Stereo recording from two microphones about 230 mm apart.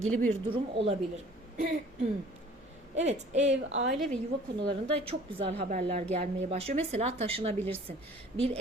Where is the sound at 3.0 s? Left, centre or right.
Right.